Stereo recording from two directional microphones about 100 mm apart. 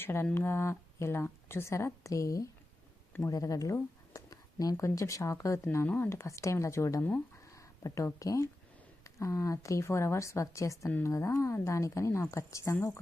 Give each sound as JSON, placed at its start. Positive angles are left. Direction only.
{"t": 0.0, "sound": "speech", "side_deg": 25}
{"t": 3.1, "sound": "a sound", "side_deg": 30}
{"t": 4.7, "sound": "speech", "side_deg": 30}